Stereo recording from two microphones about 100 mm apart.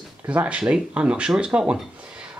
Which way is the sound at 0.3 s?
15° right (ahead or behind).